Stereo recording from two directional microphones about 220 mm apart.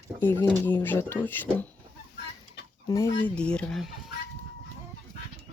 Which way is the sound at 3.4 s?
5° left (ahead or behind).